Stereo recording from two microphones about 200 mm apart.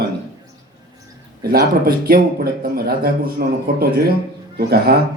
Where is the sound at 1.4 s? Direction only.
50° right (ahead or behind).